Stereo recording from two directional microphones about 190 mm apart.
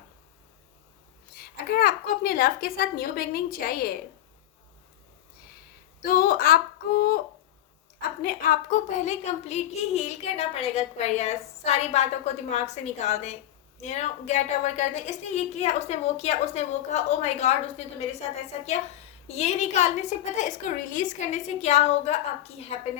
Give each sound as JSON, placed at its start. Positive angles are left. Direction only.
{"t": 1.7, "sound": "a woman's voice", "side_deg": 50}
{"t": 6.1, "sound": "a woman's voice", "side_deg": 50}
{"t": 8.2, "sound": "a woman's voice", "side_deg": 50}
{"t": 19.3, "sound": "a woman's voice", "side_deg": 35}